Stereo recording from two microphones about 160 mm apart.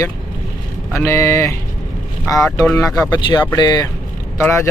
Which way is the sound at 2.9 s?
20° left (ahead or behind).